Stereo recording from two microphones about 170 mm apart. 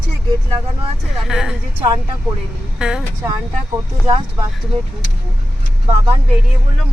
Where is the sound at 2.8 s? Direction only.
5° right (ahead or behind).